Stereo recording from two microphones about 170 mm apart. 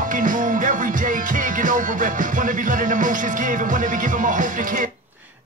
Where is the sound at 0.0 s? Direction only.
50° right (ahead or behind).